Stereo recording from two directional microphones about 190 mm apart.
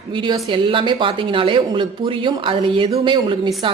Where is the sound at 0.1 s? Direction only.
25° right (ahead or behind).